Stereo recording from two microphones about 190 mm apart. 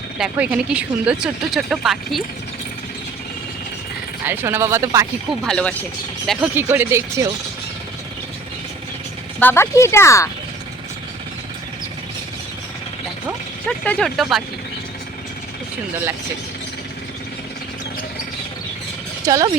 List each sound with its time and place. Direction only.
0.2 s speech: 5° right (ahead or behind)
4.3 s speech: 10° right (ahead or behind)
5.3 s speech: 5° left (ahead or behind)
6.6 s speech: 10° right (ahead or behind)
9.4 s speech: 10° left (ahead or behind)
13.7 s speech: 5° left (ahead or behind)
19.3 s speech: 15° right (ahead or behind)